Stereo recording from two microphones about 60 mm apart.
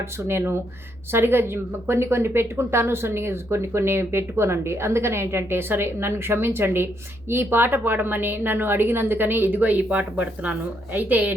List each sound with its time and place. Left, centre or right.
0.0 s a woman's voice: right